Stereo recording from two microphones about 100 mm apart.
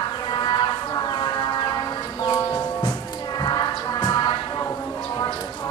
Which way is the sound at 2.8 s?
45° left (ahead or behind).